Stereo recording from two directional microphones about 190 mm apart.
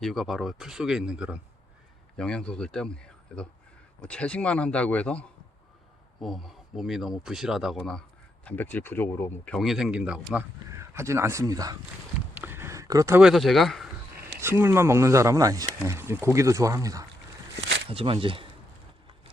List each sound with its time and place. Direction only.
0.0 s speech: centre (ahead or behind); by 11.8 s 20° right (ahead or behind)
12.3 s a sound: 10° right (ahead or behind)
13.2 s speech: centre (ahead or behind)
14.3 s speech: 10° right (ahead or behind)
17.8 s speech: 30° right (ahead or behind)